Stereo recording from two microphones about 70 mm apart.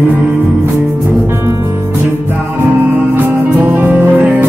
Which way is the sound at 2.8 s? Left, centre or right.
Right.